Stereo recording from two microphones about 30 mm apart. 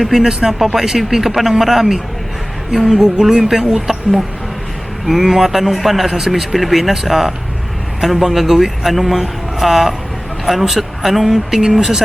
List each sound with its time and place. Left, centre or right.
0.0 s speech: centre
6.1 s speech: centre